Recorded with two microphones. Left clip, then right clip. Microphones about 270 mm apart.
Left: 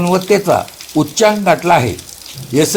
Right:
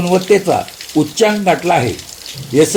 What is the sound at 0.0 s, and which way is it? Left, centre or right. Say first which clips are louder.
Speech: right 1 dB; left.